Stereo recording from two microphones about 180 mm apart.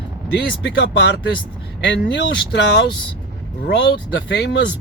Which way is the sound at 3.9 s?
70° left (ahead or behind).